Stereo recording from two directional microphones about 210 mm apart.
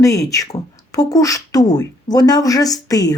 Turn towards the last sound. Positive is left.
turn(degrees=15)  # may be behind; listen again after turning